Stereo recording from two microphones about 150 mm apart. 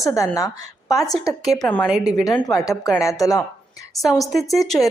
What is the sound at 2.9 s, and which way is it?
Speech, 20° left (ahead or behind).